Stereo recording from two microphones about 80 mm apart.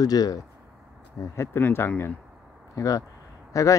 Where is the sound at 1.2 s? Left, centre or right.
Left.